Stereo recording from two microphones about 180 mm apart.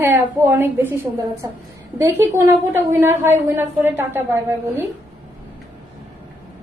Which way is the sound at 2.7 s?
15° right (ahead or behind).